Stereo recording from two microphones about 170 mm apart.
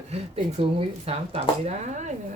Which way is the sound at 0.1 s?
35° right (ahead or behind).